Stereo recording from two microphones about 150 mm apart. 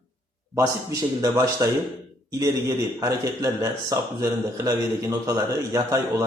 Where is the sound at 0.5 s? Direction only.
25° right (ahead or behind).